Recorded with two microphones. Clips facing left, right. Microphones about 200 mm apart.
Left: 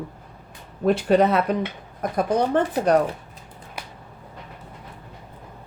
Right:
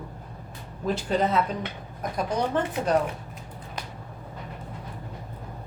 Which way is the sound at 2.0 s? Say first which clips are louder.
Left 5 dB; 55° left (ahead or behind).